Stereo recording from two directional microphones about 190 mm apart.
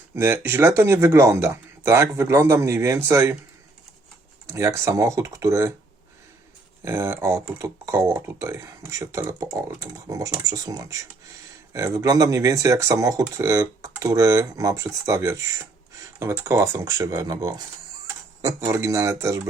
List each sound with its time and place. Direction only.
0.2 s speech: 15° right (ahead or behind)
4.4 s speech: 15° right (ahead or behind)
6.8 s speech: 15° right (ahead or behind)